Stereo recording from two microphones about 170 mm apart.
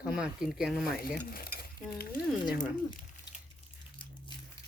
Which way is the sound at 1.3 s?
65° left (ahead or behind).